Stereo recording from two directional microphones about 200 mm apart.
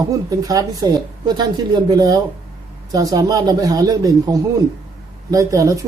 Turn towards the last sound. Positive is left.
turn(degrees=-15)  # may be behind; listen again after turning